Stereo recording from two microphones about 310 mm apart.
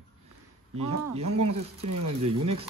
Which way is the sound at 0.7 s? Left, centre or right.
Right.